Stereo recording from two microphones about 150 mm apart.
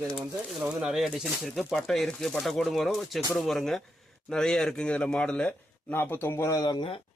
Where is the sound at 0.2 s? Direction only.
5° right (ahead or behind); by 7.0 s 35° left (ahead or behind).